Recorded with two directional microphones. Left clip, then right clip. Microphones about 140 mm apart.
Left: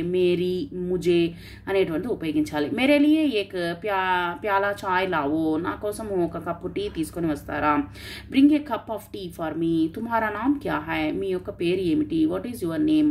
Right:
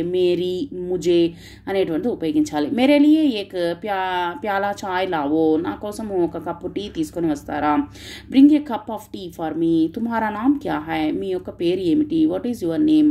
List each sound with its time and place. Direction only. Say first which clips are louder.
0.1 s speech: right 2 dB; 35° right (ahead or behind)